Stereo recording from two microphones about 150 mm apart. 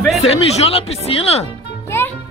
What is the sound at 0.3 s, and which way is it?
Speech, 45° left (ahead or behind).